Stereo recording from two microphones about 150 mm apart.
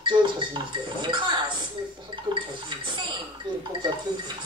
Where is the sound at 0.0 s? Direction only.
30° right (ahead or behind).